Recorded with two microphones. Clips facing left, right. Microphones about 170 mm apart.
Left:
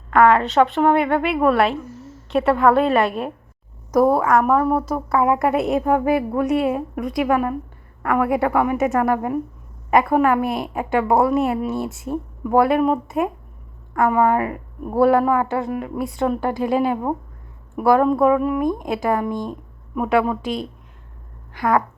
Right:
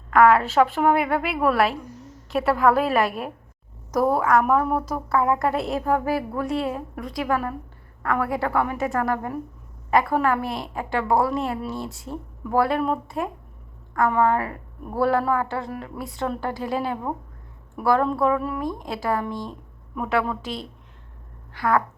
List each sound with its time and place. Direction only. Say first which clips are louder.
0.1 s a woman's voice: left 2 dB; 5° right (ahead or behind)
1.8 s a sound: left 4 dB; 15° right (ahead or behind)
2.0 s a woman's voice: left 4 dB; centre (ahead or behind)
3.9 s a woman's voice: left 4 dB; 10° left (ahead or behind)
4.9 s a woman's voice: left 3 dB; 15° left (ahead or behind)
11.3 s a woman's voice: left 7 dB; 10° left (ahead or behind)